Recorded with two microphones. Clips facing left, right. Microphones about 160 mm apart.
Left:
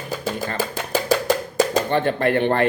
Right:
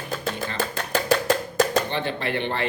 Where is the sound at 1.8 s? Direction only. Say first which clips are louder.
Left 8 dB; 50° left (ahead or behind).